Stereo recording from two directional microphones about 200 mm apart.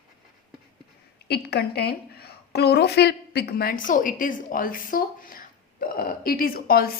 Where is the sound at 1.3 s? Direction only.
55° left (ahead or behind).